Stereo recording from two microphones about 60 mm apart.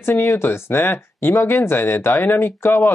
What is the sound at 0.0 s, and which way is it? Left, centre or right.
Speech, left.